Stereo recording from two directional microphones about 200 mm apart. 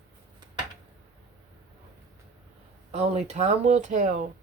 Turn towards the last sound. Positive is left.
turn(degrees=-35)  # may be behind; listen again after turning